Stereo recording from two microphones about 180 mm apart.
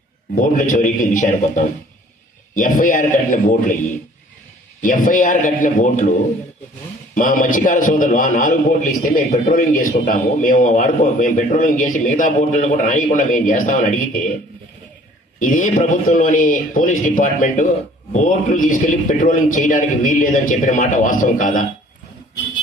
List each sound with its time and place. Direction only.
0.3 s a man's voice: 45° left (ahead or behind)
4.8 s a man's voice: 50° left (ahead or behind)
15.4 s a man's voice: 45° left (ahead or behind)